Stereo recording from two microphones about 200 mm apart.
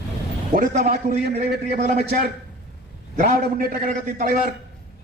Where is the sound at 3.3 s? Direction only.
45° right (ahead or behind).